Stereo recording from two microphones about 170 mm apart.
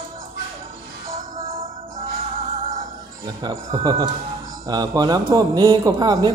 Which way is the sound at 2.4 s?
35° right (ahead or behind).